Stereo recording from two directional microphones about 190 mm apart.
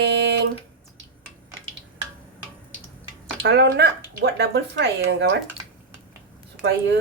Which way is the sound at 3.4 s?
60° right (ahead or behind).